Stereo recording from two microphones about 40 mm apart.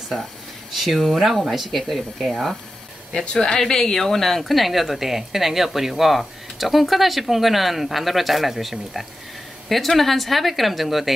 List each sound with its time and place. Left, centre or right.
0.7 s speech: centre